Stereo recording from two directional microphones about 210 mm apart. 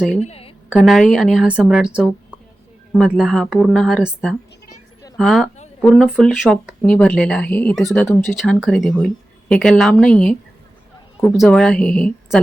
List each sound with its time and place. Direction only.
0.2 s a woman's voice: 30° left (ahead or behind)
0.7 s speech: centre (ahead or behind)
2.9 s speech: centre (ahead or behind)
8.4 s speech: centre (ahead or behind)